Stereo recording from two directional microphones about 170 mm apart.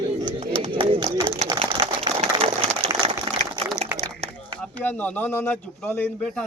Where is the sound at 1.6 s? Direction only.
35° right (ahead or behind).